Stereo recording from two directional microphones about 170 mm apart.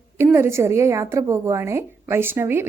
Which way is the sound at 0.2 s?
15° right (ahead or behind).